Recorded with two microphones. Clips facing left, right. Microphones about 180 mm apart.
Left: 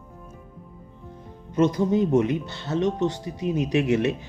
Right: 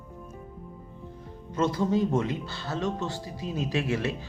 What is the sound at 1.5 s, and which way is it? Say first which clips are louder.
Speech: left 5 dB; 20° left (ahead or behind).